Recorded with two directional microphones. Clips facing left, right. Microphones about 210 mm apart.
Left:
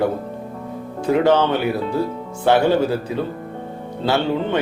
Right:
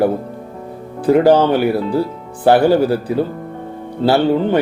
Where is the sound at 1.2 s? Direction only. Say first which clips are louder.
Right 4 dB; 35° right (ahead or behind).